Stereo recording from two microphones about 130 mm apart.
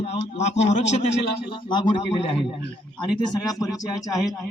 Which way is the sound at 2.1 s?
45° left (ahead or behind).